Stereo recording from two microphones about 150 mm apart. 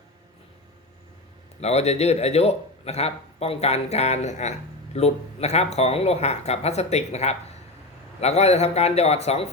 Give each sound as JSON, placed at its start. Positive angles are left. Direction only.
{"t": 1.6, "sound": "speech", "side_deg": 45}